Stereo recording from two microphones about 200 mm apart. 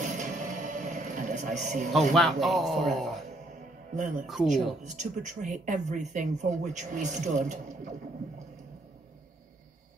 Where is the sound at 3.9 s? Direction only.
40° right (ahead or behind).